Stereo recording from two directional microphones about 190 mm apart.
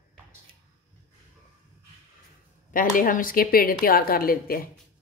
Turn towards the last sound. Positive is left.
turn(degrees=50)  # may be behind; listen again after turning